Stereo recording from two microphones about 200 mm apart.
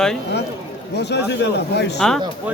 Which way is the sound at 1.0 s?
55° left (ahead or behind).